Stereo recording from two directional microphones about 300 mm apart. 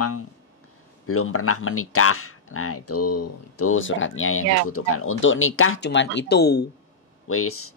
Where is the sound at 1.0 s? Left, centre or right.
Left.